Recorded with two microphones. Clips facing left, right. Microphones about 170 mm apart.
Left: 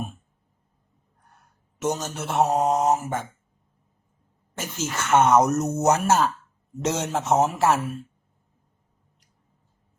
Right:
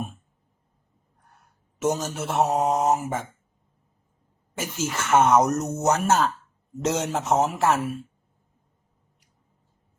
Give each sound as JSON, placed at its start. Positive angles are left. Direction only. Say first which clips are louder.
{"t": 1.8, "sound": "speech", "louder": "right 2 dB", "side_deg": -5}
{"t": 4.5, "sound": "speech", "louder": "right 1 dB", "side_deg": -10}